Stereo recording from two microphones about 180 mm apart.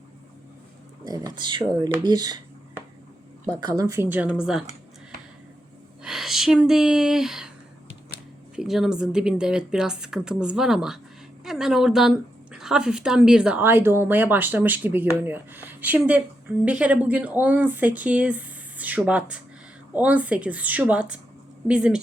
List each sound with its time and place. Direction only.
1.0 s speech: 20° right (ahead or behind)
3.7 s a woman's voice: 20° right (ahead or behind)
6.0 s speech: centre (ahead or behind)
8.5 s a woman's voice: centre (ahead or behind)